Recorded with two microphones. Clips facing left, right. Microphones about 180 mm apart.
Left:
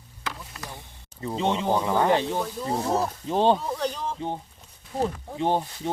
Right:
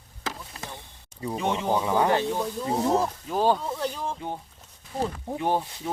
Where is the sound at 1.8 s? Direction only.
10° right (ahead or behind).